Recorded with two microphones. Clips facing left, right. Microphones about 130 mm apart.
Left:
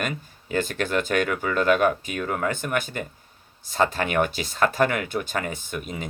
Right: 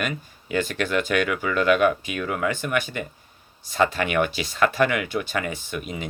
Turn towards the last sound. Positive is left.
turn(degrees=45)  # may be behind; listen again after turning